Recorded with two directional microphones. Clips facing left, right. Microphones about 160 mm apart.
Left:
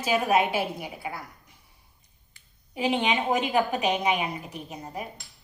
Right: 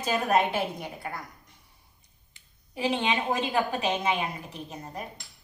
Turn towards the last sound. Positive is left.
turn(degrees=10)  # may be behind; listen again after turning